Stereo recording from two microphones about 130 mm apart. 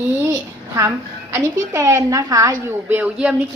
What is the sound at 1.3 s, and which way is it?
Speech, 20° right (ahead or behind).